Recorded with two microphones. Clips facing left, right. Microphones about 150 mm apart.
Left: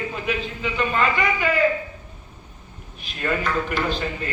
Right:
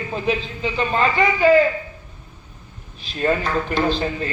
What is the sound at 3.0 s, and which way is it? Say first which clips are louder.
A man's voice: right 4 dB; 30° right (ahead or behind).